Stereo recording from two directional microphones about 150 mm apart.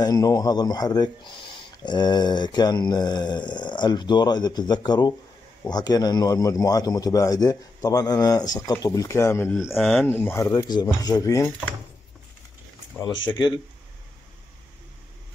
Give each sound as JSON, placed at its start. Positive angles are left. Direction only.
{"t": 0.0, "sound": "speech", "side_deg": 25}
{"t": 9.6, "sound": "speech", "side_deg": 0}
{"t": 10.0, "sound": "speech", "side_deg": 15}